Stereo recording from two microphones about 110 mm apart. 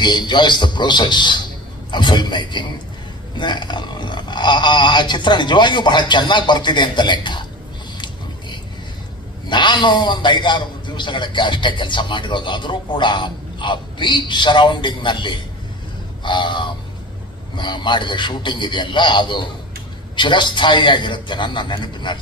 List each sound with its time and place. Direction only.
0.0 s a man's voice: 40° left (ahead or behind)
9.5 s a man's voice: 45° left (ahead or behind)